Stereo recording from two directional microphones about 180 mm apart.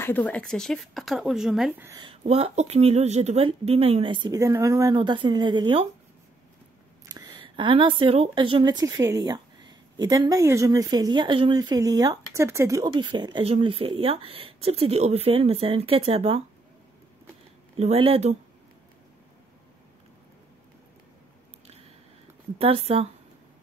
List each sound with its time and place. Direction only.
0.0 s speech: 10° left (ahead or behind)
1.8 s speech: 20° right (ahead or behind)
2.2 s speech: 35° right (ahead or behind)
7.1 s speech: 25° right (ahead or behind)
17.7 s speech: 35° right (ahead or behind)
22.6 s speech: 35° right (ahead or behind)